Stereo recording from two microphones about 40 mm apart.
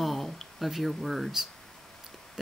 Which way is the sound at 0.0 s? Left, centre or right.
Centre.